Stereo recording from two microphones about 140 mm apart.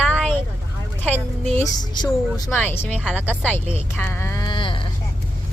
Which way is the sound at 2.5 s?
15° left (ahead or behind).